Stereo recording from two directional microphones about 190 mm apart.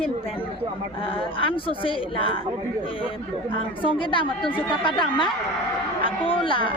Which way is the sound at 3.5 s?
25° left (ahead or behind).